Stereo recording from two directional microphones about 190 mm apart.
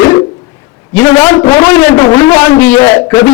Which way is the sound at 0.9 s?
15° left (ahead or behind).